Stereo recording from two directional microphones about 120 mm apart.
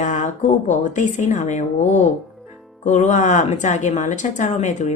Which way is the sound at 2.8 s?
90° left.